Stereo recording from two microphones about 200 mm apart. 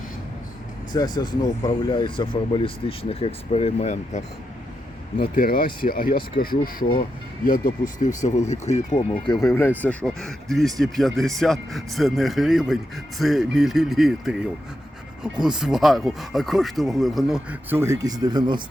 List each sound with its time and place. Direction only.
0.9 s speech: 20° left (ahead or behind)
5.3 s speech: 45° left (ahead or behind); by 18.6 s 20° right (ahead or behind)